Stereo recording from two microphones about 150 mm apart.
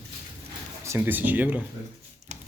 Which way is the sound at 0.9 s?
15° right (ahead or behind).